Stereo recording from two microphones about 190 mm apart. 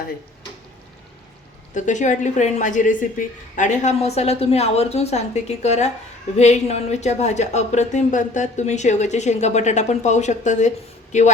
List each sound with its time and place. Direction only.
1.7 s speech: 40° left (ahead or behind)